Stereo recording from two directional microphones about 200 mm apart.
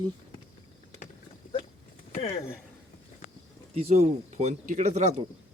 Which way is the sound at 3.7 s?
30° right (ahead or behind).